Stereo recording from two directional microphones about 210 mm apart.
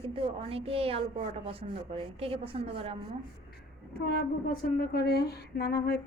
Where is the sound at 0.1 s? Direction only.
25° right (ahead or behind).